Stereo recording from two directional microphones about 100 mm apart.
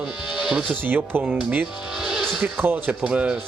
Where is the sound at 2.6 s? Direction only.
20° right (ahead or behind).